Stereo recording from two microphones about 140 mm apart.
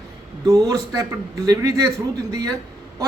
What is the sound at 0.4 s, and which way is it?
Speech, 25° right (ahead or behind).